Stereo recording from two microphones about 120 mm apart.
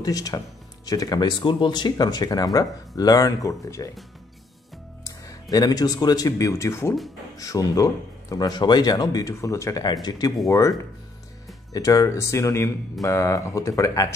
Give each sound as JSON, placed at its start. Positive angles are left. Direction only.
{"t": 0.0, "sound": "speech", "side_deg": 30}
{"t": 5.0, "sound": "speech", "side_deg": 30}
{"t": 11.7, "sound": "speech", "side_deg": 30}